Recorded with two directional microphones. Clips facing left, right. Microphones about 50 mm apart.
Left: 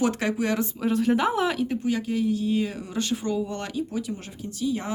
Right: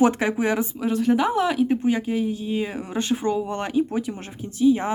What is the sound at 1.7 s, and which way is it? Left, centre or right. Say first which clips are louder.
Speech: right 4 dB; right.